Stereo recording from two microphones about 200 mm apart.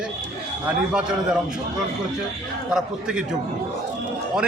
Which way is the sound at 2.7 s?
5° right (ahead or behind).